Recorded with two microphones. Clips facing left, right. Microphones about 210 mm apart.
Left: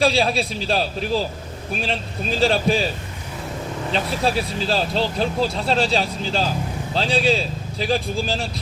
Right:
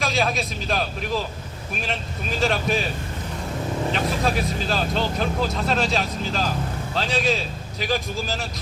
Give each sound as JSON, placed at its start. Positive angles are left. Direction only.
{"t": 0.0, "sound": "speech", "side_deg": 30}
{"t": 3.9, "sound": "speech", "side_deg": 30}